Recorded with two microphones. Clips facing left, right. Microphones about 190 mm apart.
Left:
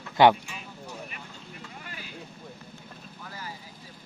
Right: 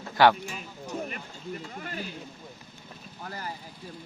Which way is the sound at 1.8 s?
45° right (ahead or behind).